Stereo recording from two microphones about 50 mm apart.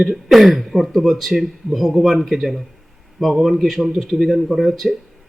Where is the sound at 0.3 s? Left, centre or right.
Centre.